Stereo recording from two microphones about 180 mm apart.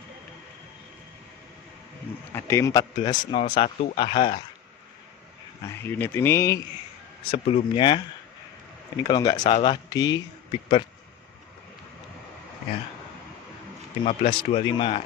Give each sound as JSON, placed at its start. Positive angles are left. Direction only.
{"t": 2.3, "sound": "speech", "side_deg": 15}
{"t": 5.8, "sound": "speech", "side_deg": 10}
{"t": 7.2, "sound": "speech", "side_deg": 30}
{"t": 9.0, "sound": "speech", "side_deg": 20}
{"t": 14.0, "sound": "speech", "side_deg": 30}